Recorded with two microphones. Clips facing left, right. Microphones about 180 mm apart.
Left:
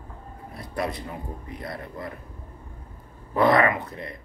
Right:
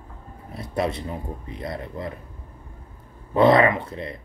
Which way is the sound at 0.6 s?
25° right (ahead or behind).